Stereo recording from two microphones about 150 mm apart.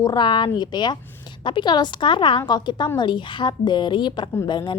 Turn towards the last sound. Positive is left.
turn(degrees=30)  # may be behind; listen again after turning